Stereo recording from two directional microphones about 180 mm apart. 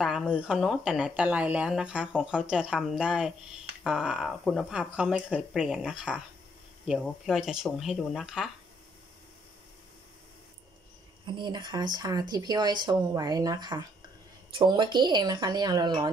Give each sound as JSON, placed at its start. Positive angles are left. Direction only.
{"t": 0.0, "sound": "speech", "side_deg": 0}
{"t": 11.2, "sound": "speech", "side_deg": -25}